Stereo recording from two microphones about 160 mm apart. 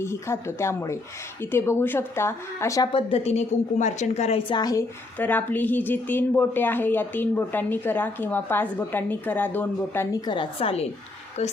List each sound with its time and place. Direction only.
0.0 s a woman's voice: 15° left (ahead or behind)
2.9 s a woman's voice: 40° left (ahead or behind)